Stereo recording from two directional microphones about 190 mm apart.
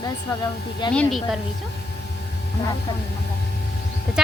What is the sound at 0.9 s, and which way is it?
Speech, 5° left (ahead or behind).